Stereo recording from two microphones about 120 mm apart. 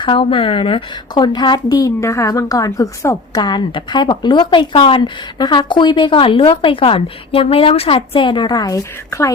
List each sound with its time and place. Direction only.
0.0 s a woman's voice: 45° left (ahead or behind); by 3.4 s 25° left (ahead or behind)
3.4 s speech: 40° left (ahead or behind)